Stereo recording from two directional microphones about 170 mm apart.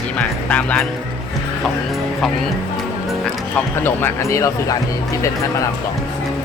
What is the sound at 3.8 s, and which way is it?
Speech, 15° left (ahead or behind).